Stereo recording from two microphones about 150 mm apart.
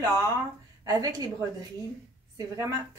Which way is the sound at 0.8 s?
25° right (ahead or behind).